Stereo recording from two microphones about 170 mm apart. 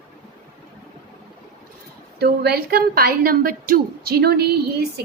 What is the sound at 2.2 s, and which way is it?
A woman's voice, 65° right (ahead or behind).